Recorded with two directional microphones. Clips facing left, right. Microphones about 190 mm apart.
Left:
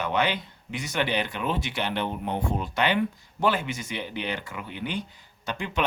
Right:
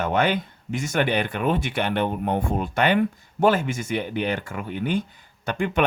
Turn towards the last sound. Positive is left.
turn(degrees=-55)  # may be behind; listen again after turning